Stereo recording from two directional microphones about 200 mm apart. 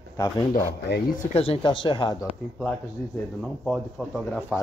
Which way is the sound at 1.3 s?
30° left (ahead or behind).